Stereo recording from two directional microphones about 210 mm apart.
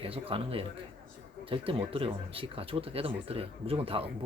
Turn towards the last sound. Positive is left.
turn(degrees=-25)  # may be behind; listen again after turning